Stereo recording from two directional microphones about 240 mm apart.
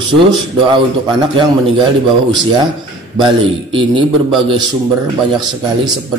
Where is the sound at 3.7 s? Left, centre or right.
Centre.